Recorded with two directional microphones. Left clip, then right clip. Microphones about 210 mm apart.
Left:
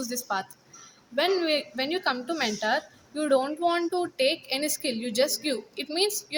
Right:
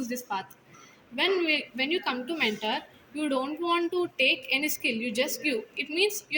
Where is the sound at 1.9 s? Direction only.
20° left (ahead or behind).